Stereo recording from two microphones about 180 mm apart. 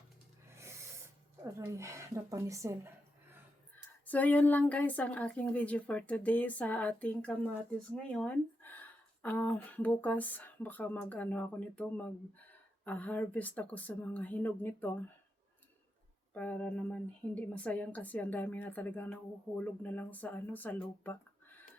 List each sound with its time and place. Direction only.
1.5 s a woman's voice: 15° right (ahead or behind)
4.0 s a woman's voice: 10° left (ahead or behind)
16.3 s a woman's voice: 10° left (ahead or behind)